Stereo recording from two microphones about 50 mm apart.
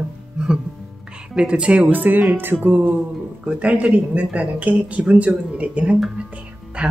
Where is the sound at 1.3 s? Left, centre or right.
Right.